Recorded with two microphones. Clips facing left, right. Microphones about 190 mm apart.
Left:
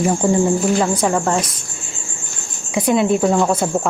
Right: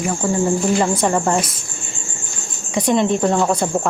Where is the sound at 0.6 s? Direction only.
Centre (ahead or behind).